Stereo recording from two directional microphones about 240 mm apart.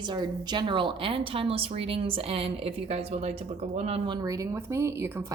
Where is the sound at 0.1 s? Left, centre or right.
Centre.